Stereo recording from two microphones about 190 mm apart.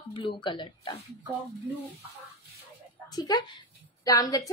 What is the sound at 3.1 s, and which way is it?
Speech, 20° left (ahead or behind).